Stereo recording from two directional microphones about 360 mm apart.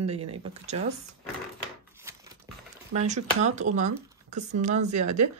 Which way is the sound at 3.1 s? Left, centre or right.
Centre.